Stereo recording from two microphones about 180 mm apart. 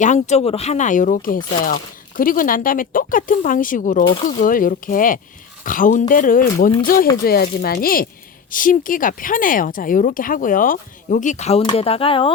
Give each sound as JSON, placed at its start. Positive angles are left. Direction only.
{"t": 0.0, "sound": "speech", "side_deg": 40}
{"t": 4.0, "sound": "speech", "side_deg": 25}
{"t": 4.4, "sound": "speech", "side_deg": 50}